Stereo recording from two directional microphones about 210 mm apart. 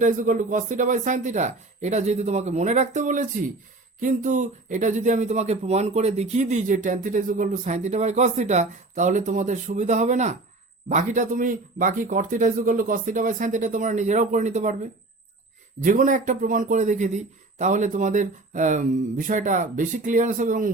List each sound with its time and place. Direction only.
0.0 s speech: 40° right (ahead or behind)
15.8 s speech: 40° right (ahead or behind)